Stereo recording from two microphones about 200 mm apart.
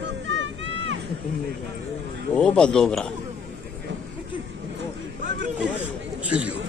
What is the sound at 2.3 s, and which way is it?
Speech, 5° left (ahead or behind).